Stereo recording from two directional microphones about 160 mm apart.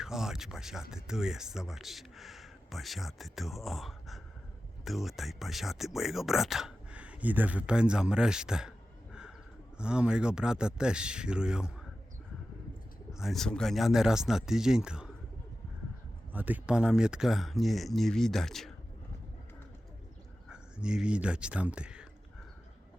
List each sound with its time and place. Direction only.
0.0 s speech: 5° right (ahead or behind)
9.7 s speech: 5° right (ahead or behind)
13.1 s speech: centre (ahead or behind)
16.3 s speech: 10° right (ahead or behind)
20.5 s speech: 5° right (ahead or behind)